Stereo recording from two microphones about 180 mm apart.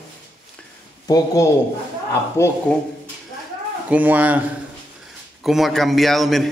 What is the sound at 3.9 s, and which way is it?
Speech, 10° right (ahead or behind).